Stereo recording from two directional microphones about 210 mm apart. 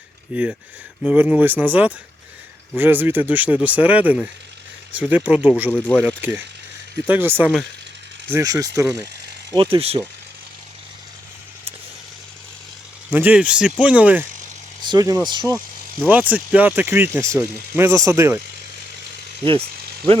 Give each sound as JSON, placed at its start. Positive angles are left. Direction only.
{"t": 0.3, "sound": "speech", "side_deg": -5}
{"t": 13.1, "sound": "speech", "side_deg": -10}
{"t": 15.5, "sound": "speech", "side_deg": -5}